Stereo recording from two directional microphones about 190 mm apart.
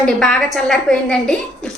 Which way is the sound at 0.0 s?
5° left (ahead or behind).